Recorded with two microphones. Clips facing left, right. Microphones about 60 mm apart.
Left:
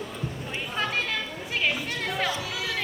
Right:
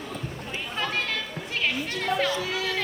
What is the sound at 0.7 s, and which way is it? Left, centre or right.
Chatter, centre.